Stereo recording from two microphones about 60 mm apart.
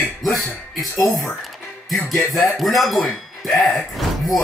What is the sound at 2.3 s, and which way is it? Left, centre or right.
Speech, centre.